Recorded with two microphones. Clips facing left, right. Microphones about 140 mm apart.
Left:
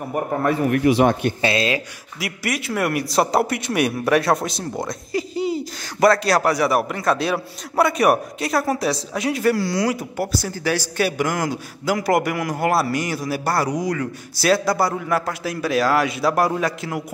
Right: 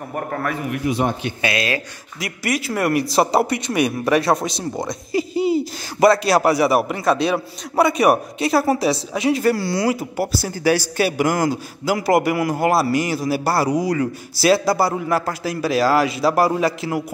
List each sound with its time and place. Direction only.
0.1 s a man's voice: 20° left (ahead or behind)
0.7 s speech: 65° left (ahead or behind); by 1.1 s 80° left
1.4 s speech: 25° left (ahead or behind)
2.1 s speech: 5° left (ahead or behind)